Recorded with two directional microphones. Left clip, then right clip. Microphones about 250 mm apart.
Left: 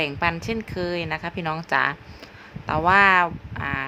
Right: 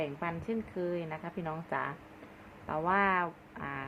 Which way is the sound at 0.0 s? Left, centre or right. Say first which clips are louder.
Left 12 dB; left.